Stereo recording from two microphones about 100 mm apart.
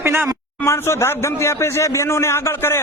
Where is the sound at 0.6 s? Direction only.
25° left (ahead or behind).